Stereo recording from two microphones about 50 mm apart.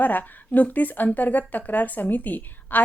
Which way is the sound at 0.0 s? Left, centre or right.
Left.